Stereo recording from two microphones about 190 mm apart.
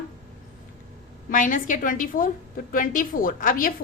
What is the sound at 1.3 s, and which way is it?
A woman's voice, 45° left (ahead or behind).